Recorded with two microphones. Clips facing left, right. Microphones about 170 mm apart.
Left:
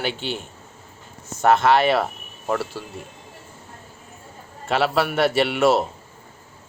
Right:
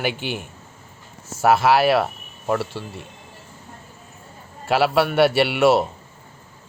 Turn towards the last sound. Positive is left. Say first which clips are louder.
# right 2 dB
turn(degrees=0)  # may be behind; listen again after turning